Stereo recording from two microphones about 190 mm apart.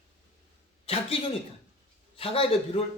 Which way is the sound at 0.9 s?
30° left (ahead or behind).